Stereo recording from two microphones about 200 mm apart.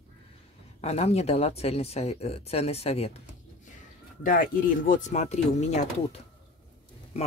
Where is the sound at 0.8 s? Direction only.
35° left (ahead or behind).